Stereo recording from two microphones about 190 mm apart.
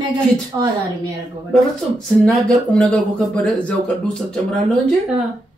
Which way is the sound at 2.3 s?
5° left (ahead or behind).